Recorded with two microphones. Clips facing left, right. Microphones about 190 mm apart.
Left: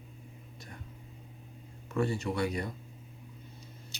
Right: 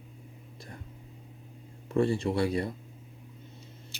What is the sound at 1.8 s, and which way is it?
Speech, 30° right (ahead or behind).